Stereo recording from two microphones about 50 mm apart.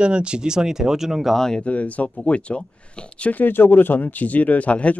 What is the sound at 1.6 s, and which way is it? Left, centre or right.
Speech, left.